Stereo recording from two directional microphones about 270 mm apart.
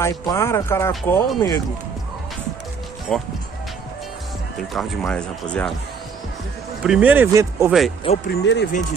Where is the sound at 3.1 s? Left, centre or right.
Centre.